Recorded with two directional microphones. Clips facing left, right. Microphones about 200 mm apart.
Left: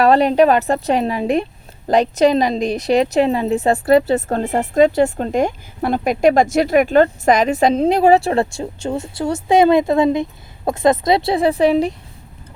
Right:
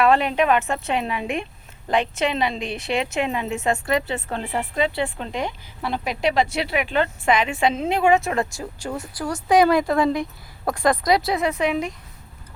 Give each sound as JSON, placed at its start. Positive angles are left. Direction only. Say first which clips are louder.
{"t": 0.0, "sound": "speech", "louder": "left 6 dB", "side_deg": 35}